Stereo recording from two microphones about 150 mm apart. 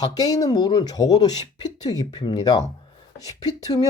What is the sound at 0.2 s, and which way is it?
Speech, 25° left (ahead or behind).